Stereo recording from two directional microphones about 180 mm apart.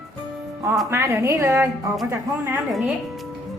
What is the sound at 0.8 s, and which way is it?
Speech, 15° right (ahead or behind).